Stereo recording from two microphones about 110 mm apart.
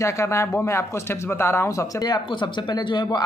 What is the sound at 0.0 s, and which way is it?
Speech, 25° left (ahead or behind).